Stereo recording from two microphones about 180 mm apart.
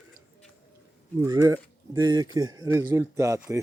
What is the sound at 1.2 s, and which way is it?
Speech, 15° right (ahead or behind).